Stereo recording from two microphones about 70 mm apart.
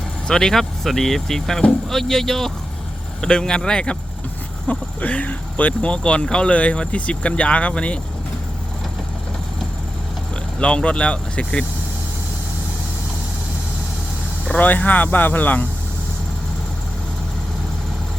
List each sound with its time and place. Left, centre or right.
0.3 s speech: centre
10.6 s speech: centre
14.6 s speech: left